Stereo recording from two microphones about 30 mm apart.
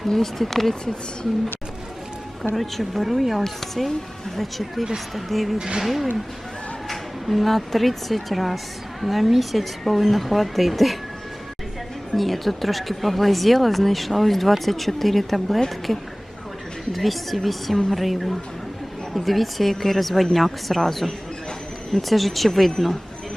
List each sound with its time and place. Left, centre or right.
0.0 s speech: centre
2.4 s speech: centre
5.5 s speech: right
5.8 s speech: centre
12.1 s speech: centre
16.9 s speech: centre